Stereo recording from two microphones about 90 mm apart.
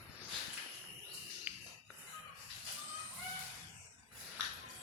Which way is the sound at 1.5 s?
15° right (ahead or behind).